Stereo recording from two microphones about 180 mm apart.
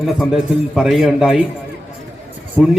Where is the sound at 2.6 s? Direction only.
5° right (ahead or behind).